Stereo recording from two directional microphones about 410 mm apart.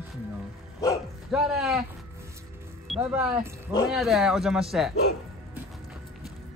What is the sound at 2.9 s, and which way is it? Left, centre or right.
Speech, centre.